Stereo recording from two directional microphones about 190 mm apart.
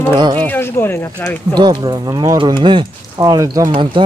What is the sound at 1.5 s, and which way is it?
Speech, 20° right (ahead or behind).